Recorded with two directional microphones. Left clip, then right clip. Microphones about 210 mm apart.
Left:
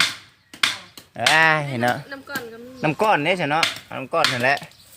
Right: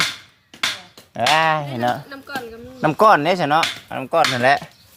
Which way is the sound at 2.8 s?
5° right (ahead or behind).